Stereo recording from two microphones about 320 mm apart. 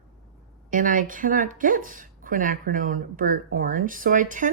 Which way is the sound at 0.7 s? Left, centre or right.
Right.